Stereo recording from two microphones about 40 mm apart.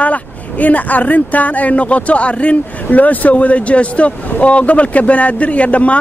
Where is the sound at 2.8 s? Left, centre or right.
Left.